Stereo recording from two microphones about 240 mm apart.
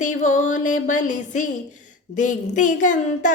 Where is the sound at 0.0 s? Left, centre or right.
Left.